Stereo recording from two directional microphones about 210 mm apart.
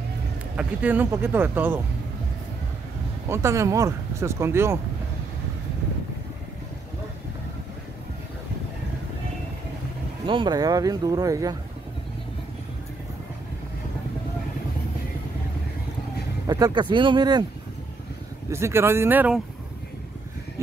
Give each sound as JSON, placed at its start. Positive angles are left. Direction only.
{"t": 0.6, "sound": "speech", "side_deg": -5}
{"t": 3.3, "sound": "speech", "side_deg": -15}
{"t": 10.2, "sound": "speech", "side_deg": -25}
{"t": 16.4, "sound": "speech", "side_deg": -20}
{"t": 18.5, "sound": "speech", "side_deg": -10}